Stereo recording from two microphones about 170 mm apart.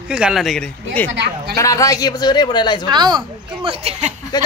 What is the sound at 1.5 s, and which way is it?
Speech, 20° left (ahead or behind).